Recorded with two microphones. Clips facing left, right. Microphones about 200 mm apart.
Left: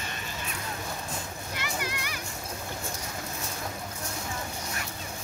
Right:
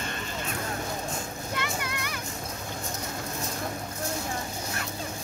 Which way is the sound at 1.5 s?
55° right (ahead or behind).